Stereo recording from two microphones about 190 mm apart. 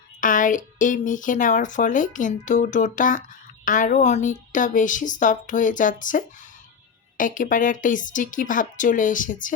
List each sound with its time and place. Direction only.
0.2 s speech: 45° left (ahead or behind)